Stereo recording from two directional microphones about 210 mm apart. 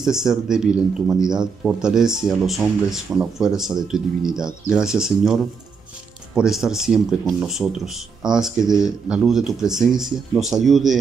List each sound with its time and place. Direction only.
0.0 s speech: centre (ahead or behind)